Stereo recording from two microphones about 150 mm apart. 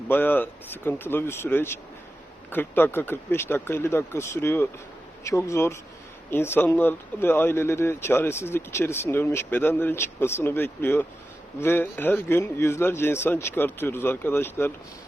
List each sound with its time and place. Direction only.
0.1 s speech: 15° left (ahead or behind)